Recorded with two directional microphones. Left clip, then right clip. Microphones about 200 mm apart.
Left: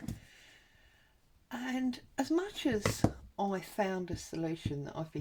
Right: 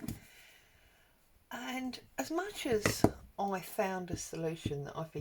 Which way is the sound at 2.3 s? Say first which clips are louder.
Left 1 dB; 40° left (ahead or behind).